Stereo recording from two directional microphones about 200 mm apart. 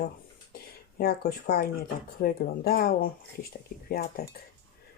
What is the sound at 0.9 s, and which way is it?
Speech, 50° left (ahead or behind).